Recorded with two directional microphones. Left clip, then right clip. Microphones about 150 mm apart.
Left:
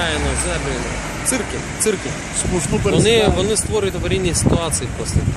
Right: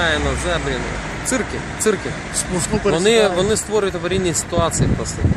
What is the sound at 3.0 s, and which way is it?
Speech, 25° right (ahead or behind).